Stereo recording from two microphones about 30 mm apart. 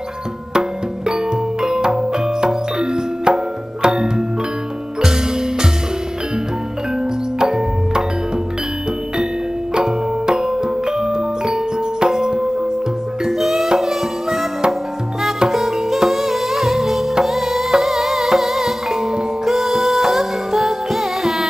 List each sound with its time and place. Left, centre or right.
0.5 s music: right
7.3 s music: right
9.8 s music: right
13.3 s music: centre